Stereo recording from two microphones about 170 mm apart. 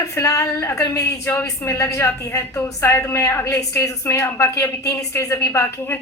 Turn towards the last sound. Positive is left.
turn(degrees=15)  # may be behind; listen again after turning